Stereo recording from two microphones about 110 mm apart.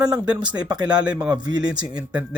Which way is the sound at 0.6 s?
40° right (ahead or behind).